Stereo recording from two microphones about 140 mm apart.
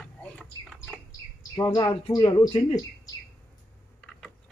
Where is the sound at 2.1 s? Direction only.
30° left (ahead or behind).